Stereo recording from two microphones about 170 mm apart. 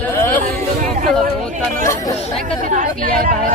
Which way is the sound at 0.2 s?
15° left (ahead or behind).